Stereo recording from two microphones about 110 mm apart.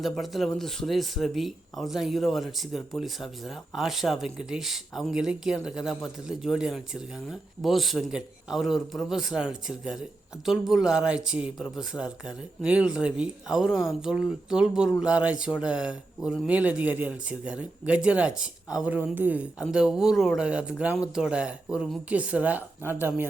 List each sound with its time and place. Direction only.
0.0 s speech: centre (ahead or behind); by 23.2 s 20° right (ahead or behind)